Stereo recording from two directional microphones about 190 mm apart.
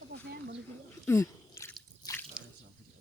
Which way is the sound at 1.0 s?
15° left (ahead or behind).